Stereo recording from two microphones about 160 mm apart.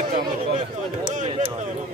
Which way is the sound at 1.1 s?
50° right (ahead or behind).